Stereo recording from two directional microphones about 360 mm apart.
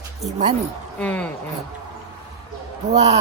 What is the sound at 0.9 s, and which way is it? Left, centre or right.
Speech, centre.